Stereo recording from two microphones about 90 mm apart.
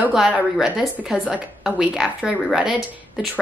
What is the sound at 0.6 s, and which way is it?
A woman's voice, 5° right (ahead or behind).